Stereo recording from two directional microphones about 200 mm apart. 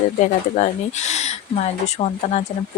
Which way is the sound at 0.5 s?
35° left (ahead or behind).